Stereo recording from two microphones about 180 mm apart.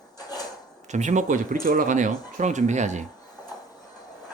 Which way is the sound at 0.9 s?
40° right (ahead or behind).